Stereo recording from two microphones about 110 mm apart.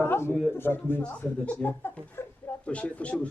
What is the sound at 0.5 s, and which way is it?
Speech, 20° left (ahead or behind).